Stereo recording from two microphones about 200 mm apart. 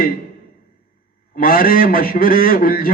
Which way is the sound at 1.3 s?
45° left (ahead or behind).